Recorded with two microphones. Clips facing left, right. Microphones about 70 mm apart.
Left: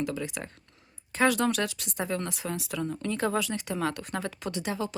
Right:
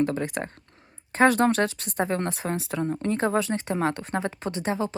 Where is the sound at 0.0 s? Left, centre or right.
Right.